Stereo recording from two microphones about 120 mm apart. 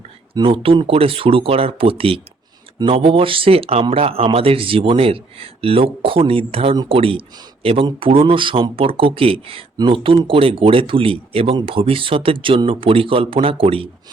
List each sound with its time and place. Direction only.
0.3 s speech: 45° right (ahead or behind)